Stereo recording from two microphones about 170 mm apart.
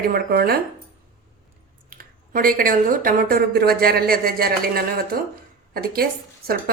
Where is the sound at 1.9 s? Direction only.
55° right (ahead or behind).